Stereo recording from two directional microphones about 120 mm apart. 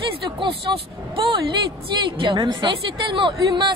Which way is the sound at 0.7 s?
35° right (ahead or behind).